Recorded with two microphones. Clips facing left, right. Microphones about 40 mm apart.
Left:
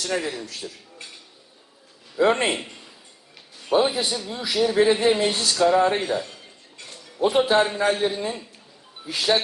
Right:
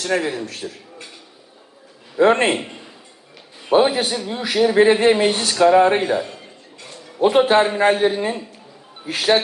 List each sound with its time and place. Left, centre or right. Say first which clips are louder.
0.0 s a man's voice: right 5 dB; right
0.4 s a man's voice: right 5 dB; right
2.1 s a man's voice: right 5 dB; right
2.5 s a man's voice: right 5 dB; right
3.7 s a man's voice: right 5 dB; right
7.2 s a man's voice: right 5 dB; right